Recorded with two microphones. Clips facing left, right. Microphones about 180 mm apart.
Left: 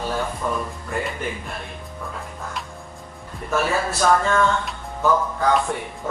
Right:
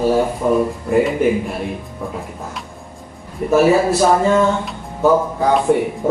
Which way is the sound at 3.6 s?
25° right (ahead or behind).